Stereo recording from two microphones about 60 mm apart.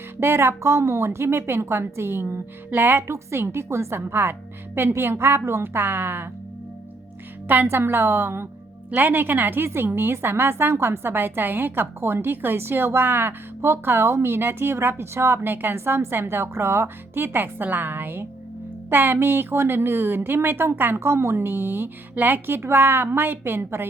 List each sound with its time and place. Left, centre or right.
0.2 s a woman's voice: right
3.1 s a woman's voice: right
7.4 s a woman's voice: right
21.0 s a woman's voice: right